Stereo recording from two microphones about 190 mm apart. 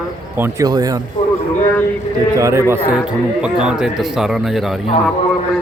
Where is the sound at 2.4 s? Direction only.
15° right (ahead or behind).